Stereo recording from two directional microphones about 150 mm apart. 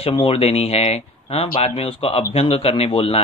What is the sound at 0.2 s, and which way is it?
Speech, 40° left (ahead or behind).